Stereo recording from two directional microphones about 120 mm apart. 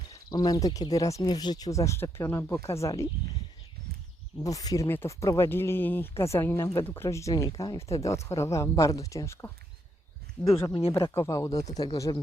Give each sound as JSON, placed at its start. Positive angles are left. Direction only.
{"t": 0.1, "sound": "speech", "side_deg": 35}
{"t": 4.4, "sound": "speech", "side_deg": 30}
{"t": 10.4, "sound": "speech", "side_deg": 10}
{"t": 11.1, "sound": "speech", "side_deg": 25}